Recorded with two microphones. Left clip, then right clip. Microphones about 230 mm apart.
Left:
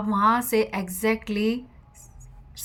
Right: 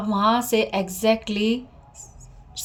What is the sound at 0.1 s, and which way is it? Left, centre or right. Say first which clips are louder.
Speech: right 1 dB; left.